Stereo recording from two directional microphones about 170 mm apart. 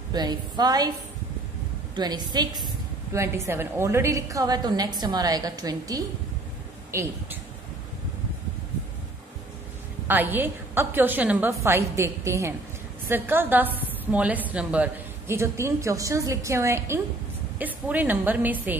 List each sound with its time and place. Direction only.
0.1 s a woman's voice: 25° right (ahead or behind)
2.0 s a woman's voice: 25° right (ahead or behind)
10.0 s a woman's voice: 10° right (ahead or behind)